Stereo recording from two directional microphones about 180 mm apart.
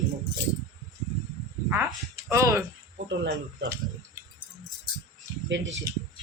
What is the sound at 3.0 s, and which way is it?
Speech, 80° right.